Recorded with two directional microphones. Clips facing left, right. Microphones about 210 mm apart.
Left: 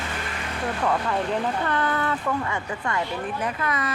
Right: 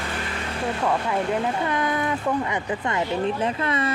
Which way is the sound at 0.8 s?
10° right (ahead or behind).